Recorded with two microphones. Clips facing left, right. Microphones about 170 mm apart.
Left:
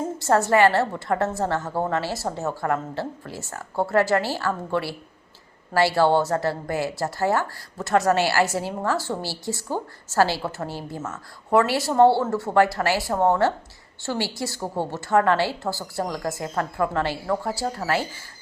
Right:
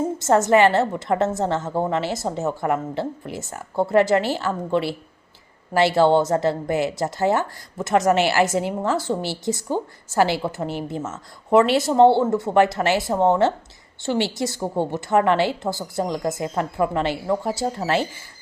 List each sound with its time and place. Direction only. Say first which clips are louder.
0.2 s a woman's voice: right 2 dB; 20° right (ahead or behind)